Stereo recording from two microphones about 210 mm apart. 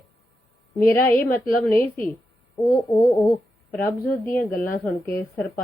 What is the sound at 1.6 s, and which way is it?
Speech, 10° left (ahead or behind).